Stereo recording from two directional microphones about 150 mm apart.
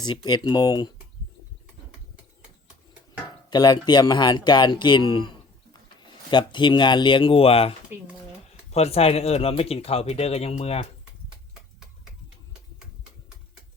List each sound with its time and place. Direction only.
0.0 s speech: 30° left (ahead or behind)
3.5 s speech: 25° left (ahead or behind)
6.3 s speech: 35° left (ahead or behind)
8.7 s speech: 45° left (ahead or behind)